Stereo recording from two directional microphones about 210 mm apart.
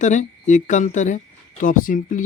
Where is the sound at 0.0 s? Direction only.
35° left (ahead or behind).